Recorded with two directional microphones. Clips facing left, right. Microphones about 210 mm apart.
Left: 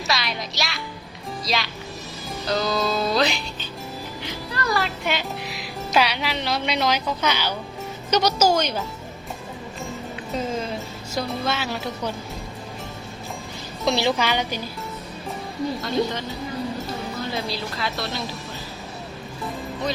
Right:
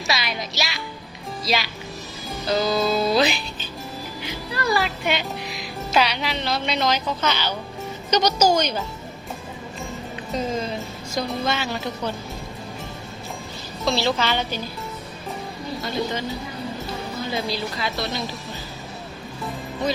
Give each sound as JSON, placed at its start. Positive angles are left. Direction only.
{"t": 0.1, "sound": "speech", "side_deg": 0}
{"t": 2.3, "sound": "music", "side_deg": 0}
{"t": 4.5, "sound": "speech", "side_deg": -5}
{"t": 11.1, "sound": "speech", "side_deg": 5}
{"t": 13.8, "sound": "a woman's voice", "side_deg": 15}
{"t": 17.3, "sound": "speech", "side_deg": 0}